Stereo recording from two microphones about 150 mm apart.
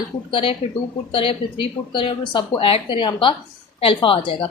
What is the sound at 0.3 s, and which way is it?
Speech, 35° left (ahead or behind).